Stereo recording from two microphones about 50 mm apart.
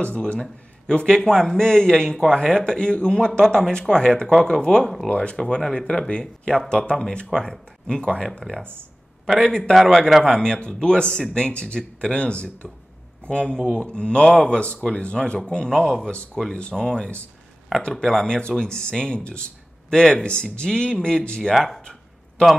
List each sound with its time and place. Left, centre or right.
0.0 s speech: left
9.9 s a man's voice: centre
10.2 s speech: centre
21.5 s speech: centre